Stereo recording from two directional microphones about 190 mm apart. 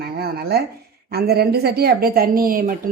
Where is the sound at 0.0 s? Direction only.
55° right (ahead or behind).